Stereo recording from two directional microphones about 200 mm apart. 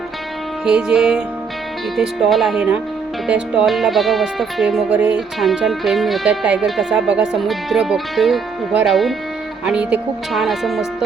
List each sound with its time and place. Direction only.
0.6 s speech: 5° right (ahead or behind)